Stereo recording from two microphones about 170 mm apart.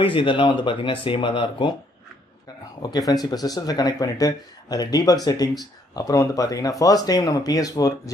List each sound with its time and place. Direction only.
0.0 s speech: 30° left (ahead or behind)
2.8 s speech: 20° left (ahead or behind)